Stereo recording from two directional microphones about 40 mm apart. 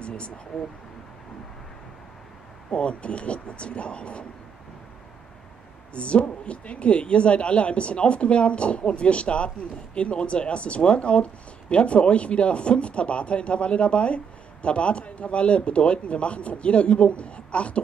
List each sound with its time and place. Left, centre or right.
0.5 s speech: centre
2.7 s speech: left
5.9 s speech: left